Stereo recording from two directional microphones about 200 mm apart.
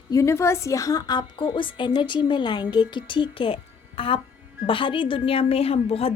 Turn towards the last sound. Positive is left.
turn(degrees=30)  # may be behind; listen again after turning